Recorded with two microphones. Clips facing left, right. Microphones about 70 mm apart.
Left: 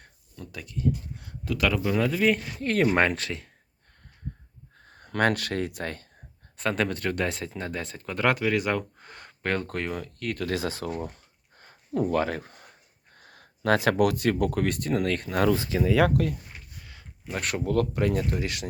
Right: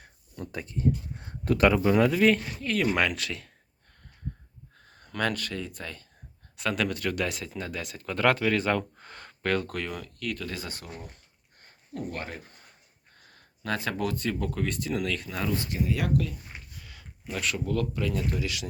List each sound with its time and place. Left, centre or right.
0.3 s speech: right
1.7 s speech: centre
2.0 s speech: centre
2.6 s speech: left
4.9 s speech: left
6.6 s speech: left
8.0 s speech: centre; by 10.4 s left
10.4 s speech: left
12.3 s speech: left
13.1 s speech: left
16.1 s speech: left
16.8 s a sound: left
17.4 s speech: left